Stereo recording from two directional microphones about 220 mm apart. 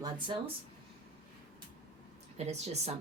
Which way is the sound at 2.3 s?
30° right (ahead or behind).